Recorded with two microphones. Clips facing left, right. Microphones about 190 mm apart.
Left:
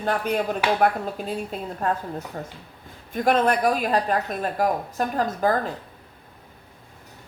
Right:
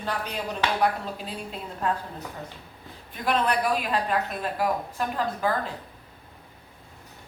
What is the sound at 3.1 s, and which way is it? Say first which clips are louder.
A woman's voice: left 5 dB; 45° left (ahead or behind).